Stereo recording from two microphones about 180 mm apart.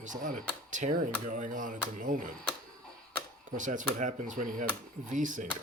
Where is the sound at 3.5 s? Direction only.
45° right (ahead or behind).